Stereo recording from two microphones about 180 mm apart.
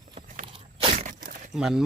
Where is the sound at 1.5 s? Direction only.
5° right (ahead or behind).